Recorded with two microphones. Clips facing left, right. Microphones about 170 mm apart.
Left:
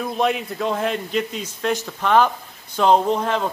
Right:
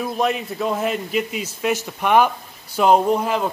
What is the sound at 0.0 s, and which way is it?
A man's voice, centre (ahead or behind).